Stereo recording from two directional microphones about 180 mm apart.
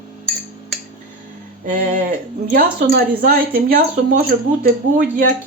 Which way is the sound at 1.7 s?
50° right (ahead or behind).